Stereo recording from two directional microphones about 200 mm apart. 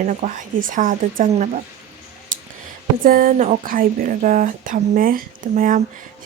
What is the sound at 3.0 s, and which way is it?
Speech, 45° right (ahead or behind).